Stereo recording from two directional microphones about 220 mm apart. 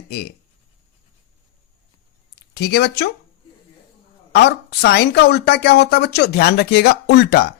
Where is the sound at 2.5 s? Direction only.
50° left (ahead or behind).